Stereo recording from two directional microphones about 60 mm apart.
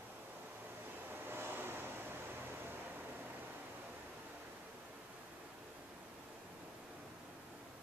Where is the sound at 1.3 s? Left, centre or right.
Right.